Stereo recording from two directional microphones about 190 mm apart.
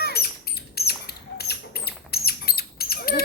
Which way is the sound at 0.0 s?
55° left (ahead or behind).